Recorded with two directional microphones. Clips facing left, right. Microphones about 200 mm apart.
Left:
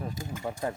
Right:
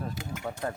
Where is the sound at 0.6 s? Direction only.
10° left (ahead or behind).